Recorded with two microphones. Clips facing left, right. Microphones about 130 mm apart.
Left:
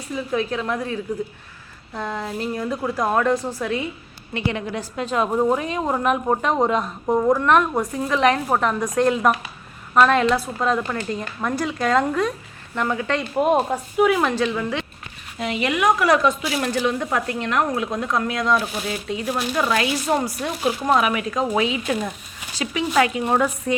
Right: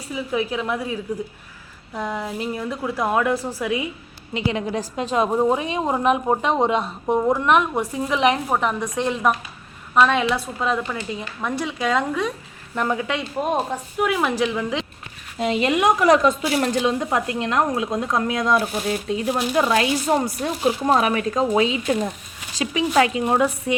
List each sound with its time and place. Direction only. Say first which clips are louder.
0.1 s a woman's voice: even; 10° right (ahead or behind)
4.4 s a woman's voice: right 2 dB; 30° right (ahead or behind)
5.1 s a woman's voice: right 1 dB; 10° right (ahead or behind)
6.7 s speech: even; 30° right (ahead or behind)
7.1 s a woman's voice: left 1 dB; 10° right (ahead or behind)
12.7 s a woman's voice: right 1 dB; 15° right (ahead or behind)
13.1 s speech: left 4 dB; centre (ahead or behind)
15.4 s speech: right 3 dB; 25° right (ahead or behind)
18.9 s a woman's voice: right 3 dB; 35° right (ahead or behind)
19.3 s a woman's voice: right 2 dB; 20° right (ahead or behind)